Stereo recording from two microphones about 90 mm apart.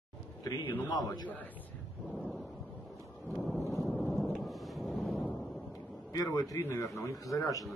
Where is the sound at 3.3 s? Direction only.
Centre (ahead or behind).